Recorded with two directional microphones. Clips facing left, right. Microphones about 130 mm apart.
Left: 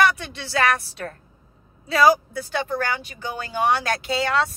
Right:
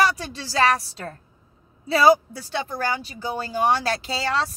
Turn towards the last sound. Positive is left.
turn(degrees=-30)  # may be behind; listen again after turning